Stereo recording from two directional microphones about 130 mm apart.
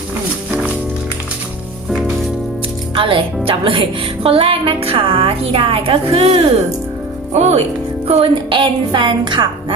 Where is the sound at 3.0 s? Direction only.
40° right (ahead or behind); by 7.6 s 60° right (ahead or behind).